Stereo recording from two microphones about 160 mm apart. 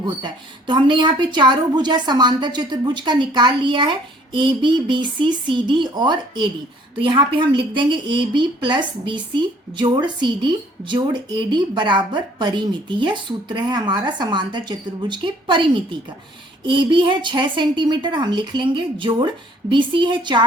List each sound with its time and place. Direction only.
0.0 s a woman's voice: 25° right (ahead or behind)